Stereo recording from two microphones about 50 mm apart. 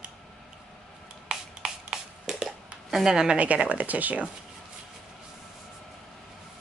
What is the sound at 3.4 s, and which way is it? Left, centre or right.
Speech, right.